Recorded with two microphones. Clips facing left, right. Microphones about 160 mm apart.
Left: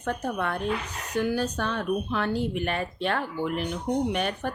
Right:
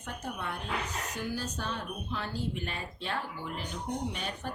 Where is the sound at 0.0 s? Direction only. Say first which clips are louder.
Left 9 dB; 70° left (ahead or behind).